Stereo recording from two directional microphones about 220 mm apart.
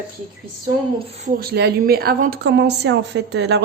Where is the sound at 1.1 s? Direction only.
35° right (ahead or behind).